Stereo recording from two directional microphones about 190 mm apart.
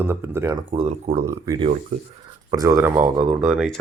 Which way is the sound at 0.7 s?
30° right (ahead or behind).